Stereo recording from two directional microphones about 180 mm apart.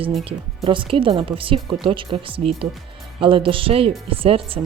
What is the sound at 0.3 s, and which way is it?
Speech, 30° right (ahead or behind).